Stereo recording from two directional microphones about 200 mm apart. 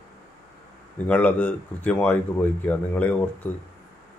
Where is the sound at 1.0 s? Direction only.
5° left (ahead or behind).